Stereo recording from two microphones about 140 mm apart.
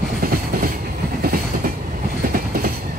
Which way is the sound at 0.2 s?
90° right.